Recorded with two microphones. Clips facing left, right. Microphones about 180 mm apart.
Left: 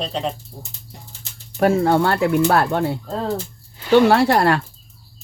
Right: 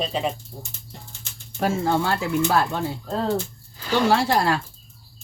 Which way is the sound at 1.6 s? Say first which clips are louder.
Left 6 dB; 60° left (ahead or behind).